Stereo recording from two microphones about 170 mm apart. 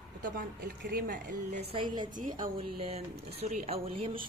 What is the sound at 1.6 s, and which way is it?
Speech, 30° right (ahead or behind).